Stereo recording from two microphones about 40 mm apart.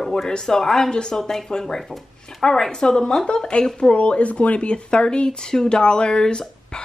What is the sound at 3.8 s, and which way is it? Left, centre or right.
Speech, left.